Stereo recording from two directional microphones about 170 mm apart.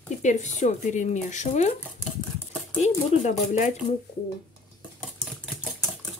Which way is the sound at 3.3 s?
45° left (ahead or behind).